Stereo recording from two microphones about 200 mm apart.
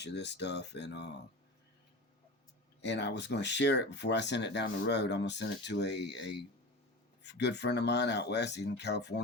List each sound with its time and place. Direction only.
0.0 s speech: 60° left (ahead or behind)
2.8 s speech: 60° left (ahead or behind)